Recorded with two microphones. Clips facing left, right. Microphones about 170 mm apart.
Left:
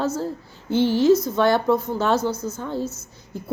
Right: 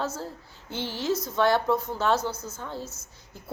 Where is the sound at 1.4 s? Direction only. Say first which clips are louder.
Left 4 dB; centre (ahead or behind).